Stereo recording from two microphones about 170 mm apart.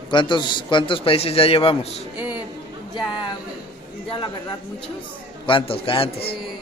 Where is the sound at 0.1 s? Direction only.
25° left (ahead or behind).